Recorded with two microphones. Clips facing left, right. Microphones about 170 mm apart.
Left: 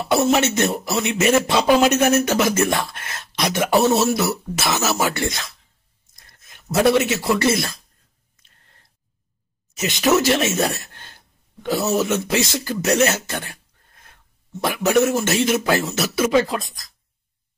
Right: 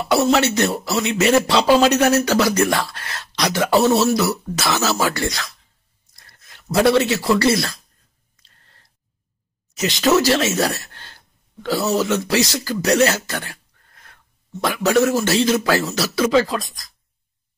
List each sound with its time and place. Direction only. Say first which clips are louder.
0.1 s speech: right 1 dB; 20° left (ahead or behind)
8.4 s a sound: right 1 dB; 20° left (ahead or behind)
9.8 s speech: right 1 dB; 20° left (ahead or behind)